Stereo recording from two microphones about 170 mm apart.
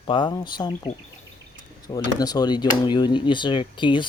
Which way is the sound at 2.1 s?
25° left (ahead or behind).